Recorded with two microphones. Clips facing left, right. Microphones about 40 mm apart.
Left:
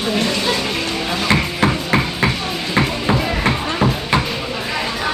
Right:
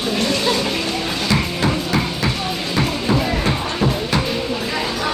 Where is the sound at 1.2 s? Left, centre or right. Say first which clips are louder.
Left 4 dB; left.